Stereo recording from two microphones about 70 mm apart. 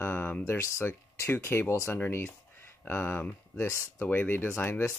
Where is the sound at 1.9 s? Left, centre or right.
Left.